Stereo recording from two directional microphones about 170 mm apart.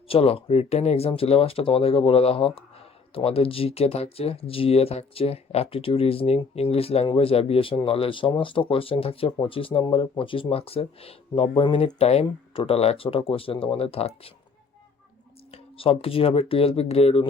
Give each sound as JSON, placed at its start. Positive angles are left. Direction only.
{"t": 0.1, "sound": "speech", "side_deg": 35}
{"t": 15.5, "sound": "speech", "side_deg": 35}